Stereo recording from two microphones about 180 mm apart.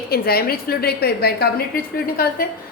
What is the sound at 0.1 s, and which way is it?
A woman's voice, 60° left (ahead or behind).